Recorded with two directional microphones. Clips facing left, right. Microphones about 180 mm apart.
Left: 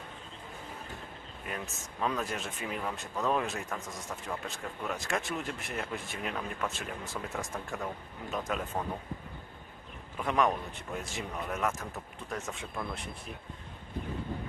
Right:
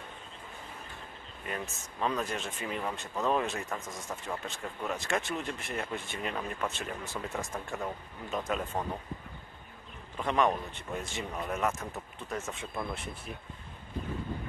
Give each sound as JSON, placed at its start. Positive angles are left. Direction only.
{"t": 1.4, "sound": "speech", "side_deg": 0}
{"t": 10.1, "sound": "speech", "side_deg": 0}